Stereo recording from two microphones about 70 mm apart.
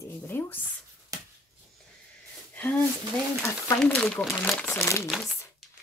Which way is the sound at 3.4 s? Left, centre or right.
Left.